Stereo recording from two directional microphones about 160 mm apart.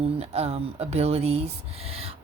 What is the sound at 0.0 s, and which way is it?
Speech, 40° right (ahead or behind).